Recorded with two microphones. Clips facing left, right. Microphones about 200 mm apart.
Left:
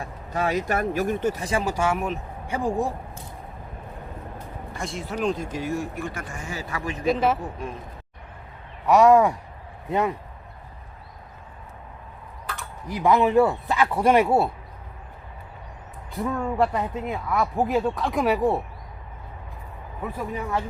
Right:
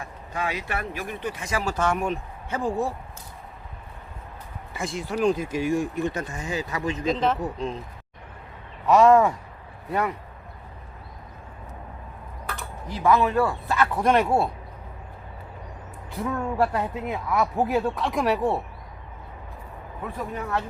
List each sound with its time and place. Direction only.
0.0 s speech: 40° left (ahead or behind)
1.6 s speech: 10° left (ahead or behind)
4.7 s speech: centre (ahead or behind); by 6.9 s 20° right (ahead or behind)
7.1 s speech: 10° left (ahead or behind)
8.9 s speech: 10° left (ahead or behind)
12.9 s speech: 15° left (ahead or behind)
16.2 s speech: 5° right (ahead or behind)
20.1 s speech: 10° left (ahead or behind)